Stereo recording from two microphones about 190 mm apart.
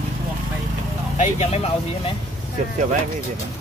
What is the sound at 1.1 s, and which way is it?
Speech, 35° left (ahead or behind).